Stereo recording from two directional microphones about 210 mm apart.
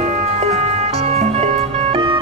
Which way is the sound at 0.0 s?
30° right (ahead or behind).